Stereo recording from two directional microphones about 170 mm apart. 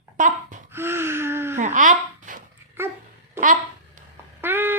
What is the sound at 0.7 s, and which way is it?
Gasp, 15° right (ahead or behind).